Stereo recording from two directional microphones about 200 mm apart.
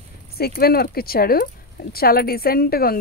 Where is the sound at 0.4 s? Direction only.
50° left (ahead or behind).